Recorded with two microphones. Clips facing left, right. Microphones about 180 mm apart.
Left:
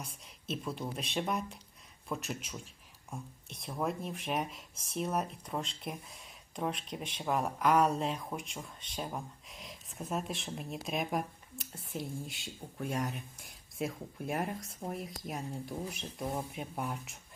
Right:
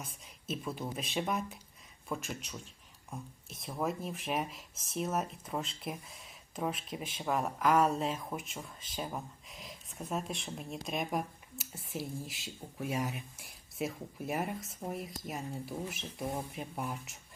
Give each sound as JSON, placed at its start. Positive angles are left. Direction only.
{"t": 0.0, "sound": "speech", "side_deg": 0}